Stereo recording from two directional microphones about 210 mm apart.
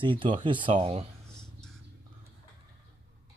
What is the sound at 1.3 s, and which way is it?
Whispering, 5° left (ahead or behind).